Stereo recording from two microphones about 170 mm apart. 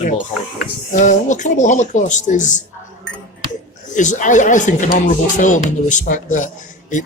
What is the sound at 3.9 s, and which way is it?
Speech, 45° left (ahead or behind).